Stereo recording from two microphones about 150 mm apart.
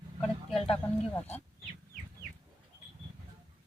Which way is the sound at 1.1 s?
10° left (ahead or behind).